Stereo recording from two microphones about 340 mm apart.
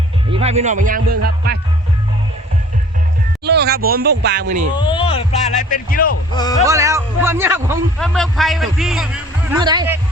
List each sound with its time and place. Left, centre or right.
0.3 s a man's voice: centre
3.4 s speech: right
4.8 s a sound: centre
6.3 s speech: centre
6.7 s a man's voice: centre
9.5 s a man's voice: centre